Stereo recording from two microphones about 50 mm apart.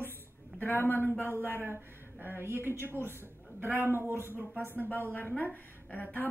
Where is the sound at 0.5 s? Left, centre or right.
Left.